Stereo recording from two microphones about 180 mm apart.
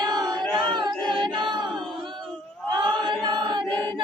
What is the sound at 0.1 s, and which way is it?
Child singing, 20° right (ahead or behind).